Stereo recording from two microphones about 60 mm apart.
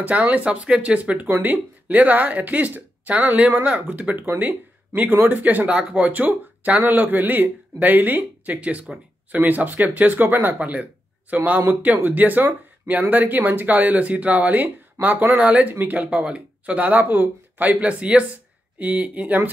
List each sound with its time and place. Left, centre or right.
0.0 s speech: right
10.6 s speech: right